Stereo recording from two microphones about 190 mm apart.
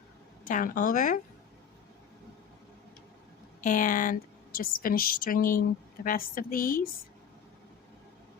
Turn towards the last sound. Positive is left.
turn(degrees=45)  # may be behind; listen again after turning